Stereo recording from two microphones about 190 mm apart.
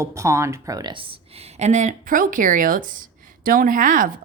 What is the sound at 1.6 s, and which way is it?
Speech, 40° right (ahead or behind).